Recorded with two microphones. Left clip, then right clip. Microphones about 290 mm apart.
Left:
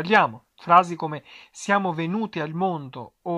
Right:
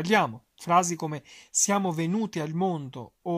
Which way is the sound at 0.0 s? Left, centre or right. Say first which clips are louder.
Left 5 dB; right.